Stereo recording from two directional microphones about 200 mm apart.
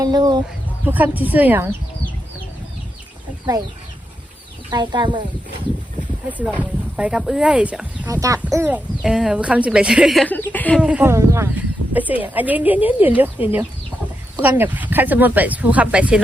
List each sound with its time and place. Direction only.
0.0 s speech: 20° right (ahead or behind)
0.9 s speech: 10° right (ahead or behind)
4.7 s speech: 20° right (ahead or behind)
6.2 s speech: 5° right (ahead or behind); by 10.8 s 10° left (ahead or behind)
10.8 s speech: 5° right (ahead or behind)